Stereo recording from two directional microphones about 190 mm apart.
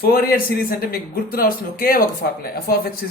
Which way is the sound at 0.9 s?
50° left (ahead or behind).